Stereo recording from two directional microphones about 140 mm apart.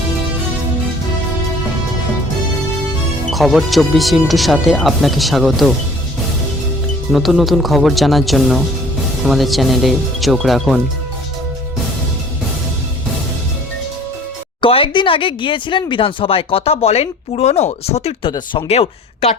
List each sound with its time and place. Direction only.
3.2 s speech: centre (ahead or behind)
7.1 s speech: centre (ahead or behind)
14.6 s speech: 40° left (ahead or behind)
18.3 s speech: 35° left (ahead or behind)
18.7 s speech: 50° left (ahead or behind)